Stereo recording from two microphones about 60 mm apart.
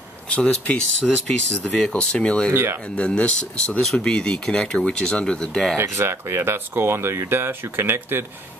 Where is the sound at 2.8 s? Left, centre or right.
Centre.